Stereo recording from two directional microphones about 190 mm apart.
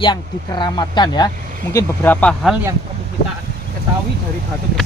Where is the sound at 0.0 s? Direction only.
25° left (ahead or behind); by 2.5 s 5° left (ahead or behind).